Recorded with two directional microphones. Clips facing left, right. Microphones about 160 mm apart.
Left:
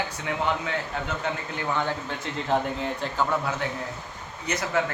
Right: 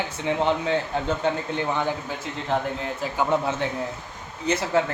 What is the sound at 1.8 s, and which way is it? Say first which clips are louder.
Speech: right 2 dB; 15° right (ahead or behind).